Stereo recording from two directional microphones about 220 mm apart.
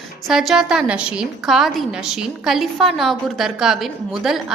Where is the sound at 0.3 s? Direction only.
Centre (ahead or behind).